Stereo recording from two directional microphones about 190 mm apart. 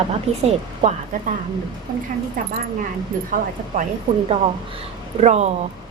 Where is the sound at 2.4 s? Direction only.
45° right (ahead or behind).